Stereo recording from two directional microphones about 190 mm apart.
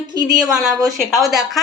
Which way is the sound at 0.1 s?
20° right (ahead or behind).